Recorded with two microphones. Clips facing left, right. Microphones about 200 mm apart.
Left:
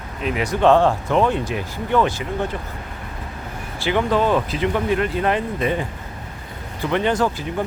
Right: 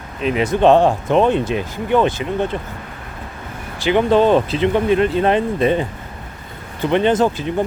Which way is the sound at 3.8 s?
20° right (ahead or behind).